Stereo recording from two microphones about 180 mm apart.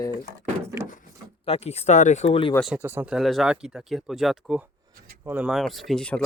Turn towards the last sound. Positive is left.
turn(degrees=5)  # may be behind; listen again after turning